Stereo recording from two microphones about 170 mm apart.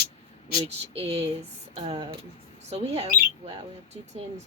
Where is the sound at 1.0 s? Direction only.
35° right (ahead or behind).